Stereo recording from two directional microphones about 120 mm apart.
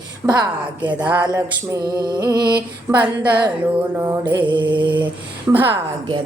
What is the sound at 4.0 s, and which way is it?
Music, 25° right (ahead or behind).